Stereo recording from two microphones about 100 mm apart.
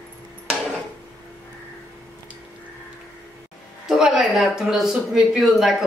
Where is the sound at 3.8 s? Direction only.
5° right (ahead or behind).